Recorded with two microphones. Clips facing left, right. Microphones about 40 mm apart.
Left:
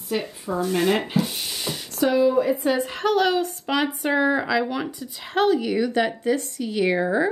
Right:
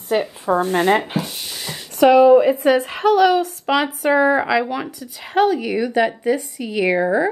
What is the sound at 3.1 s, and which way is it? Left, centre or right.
Speech, centre.